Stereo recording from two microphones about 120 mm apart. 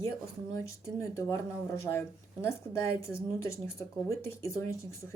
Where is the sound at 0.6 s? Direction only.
25° left (ahead or behind).